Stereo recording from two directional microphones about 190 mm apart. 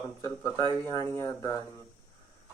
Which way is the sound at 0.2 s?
15° left (ahead or behind).